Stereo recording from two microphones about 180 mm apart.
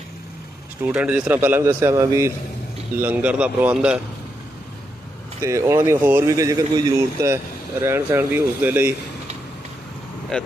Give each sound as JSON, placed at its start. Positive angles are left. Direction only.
{"t": 0.8, "sound": "speech", "side_deg": -10}
{"t": 5.4, "sound": "speech", "side_deg": -15}